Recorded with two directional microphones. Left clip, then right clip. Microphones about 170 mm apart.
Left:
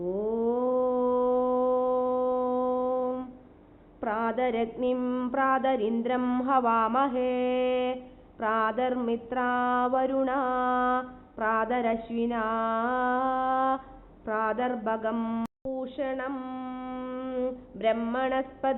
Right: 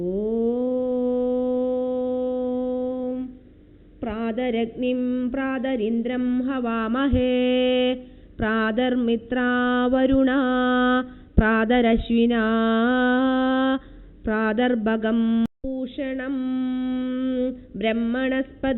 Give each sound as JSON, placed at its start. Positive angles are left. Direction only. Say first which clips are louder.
{"t": 0.5, "sound": "mantra", "louder": "right 2 dB", "side_deg": -20}
{"t": 4.0, "sound": "mantra", "louder": "right 1 dB", "side_deg": -25}
{"t": 15.8, "sound": "a sound", "louder": "right 2 dB", "side_deg": -35}